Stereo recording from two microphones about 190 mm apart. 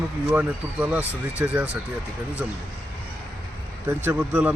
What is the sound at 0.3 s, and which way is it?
Speech, 10° right (ahead or behind).